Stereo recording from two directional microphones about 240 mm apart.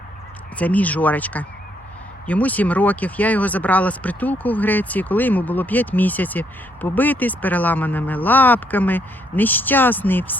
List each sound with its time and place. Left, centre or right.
0.6 s speech: centre